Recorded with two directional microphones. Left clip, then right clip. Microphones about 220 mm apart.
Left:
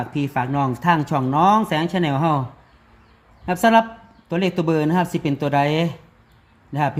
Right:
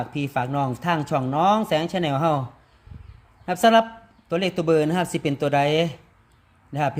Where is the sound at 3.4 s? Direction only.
10° right (ahead or behind).